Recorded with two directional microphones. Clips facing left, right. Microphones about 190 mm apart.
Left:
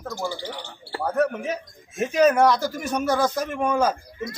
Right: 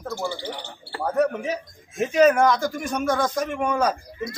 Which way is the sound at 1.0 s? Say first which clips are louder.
Right 1 dB; centre (ahead or behind).